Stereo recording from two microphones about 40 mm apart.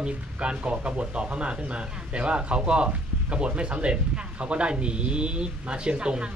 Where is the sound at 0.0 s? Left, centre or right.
Right.